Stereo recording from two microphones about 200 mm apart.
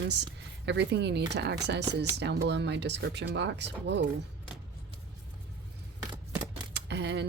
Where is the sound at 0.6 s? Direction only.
60° right (ahead or behind).